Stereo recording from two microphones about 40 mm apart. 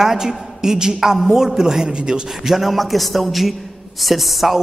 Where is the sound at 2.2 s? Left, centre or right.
Centre.